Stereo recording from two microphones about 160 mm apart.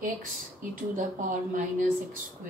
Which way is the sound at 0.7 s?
55° right (ahead or behind).